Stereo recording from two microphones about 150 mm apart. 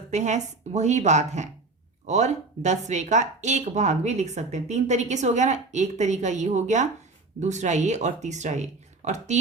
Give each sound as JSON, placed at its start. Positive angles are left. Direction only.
{"t": 0.1, "sound": "speech", "side_deg": -50}